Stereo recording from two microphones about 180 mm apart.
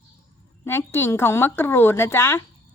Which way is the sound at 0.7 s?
15° left (ahead or behind).